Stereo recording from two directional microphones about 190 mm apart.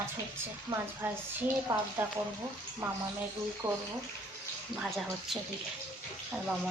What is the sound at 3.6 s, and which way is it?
Speech, 15° right (ahead or behind).